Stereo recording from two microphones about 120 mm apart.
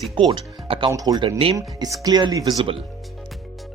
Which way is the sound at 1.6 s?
30° right (ahead or behind).